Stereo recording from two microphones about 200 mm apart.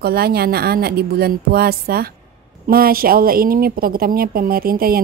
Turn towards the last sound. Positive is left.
turn(degrees=-45)  # may be behind; listen again after turning